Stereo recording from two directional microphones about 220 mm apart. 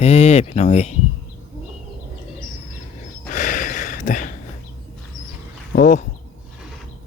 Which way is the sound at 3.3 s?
35° left (ahead or behind).